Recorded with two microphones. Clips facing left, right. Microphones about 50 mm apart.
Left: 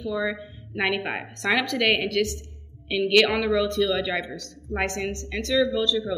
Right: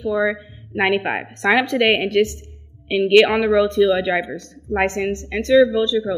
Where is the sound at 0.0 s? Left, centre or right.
Right.